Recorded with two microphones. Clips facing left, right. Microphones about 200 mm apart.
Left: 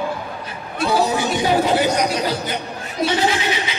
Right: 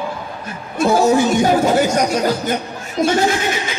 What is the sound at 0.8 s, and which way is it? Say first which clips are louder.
A woman's voice: right 6 dB; 45° right (ahead or behind).